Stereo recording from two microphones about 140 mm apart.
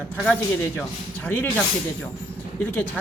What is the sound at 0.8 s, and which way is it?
Speech, 10° left (ahead or behind).